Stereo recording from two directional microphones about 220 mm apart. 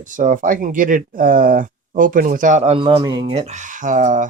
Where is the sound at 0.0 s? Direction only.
35° right (ahead or behind).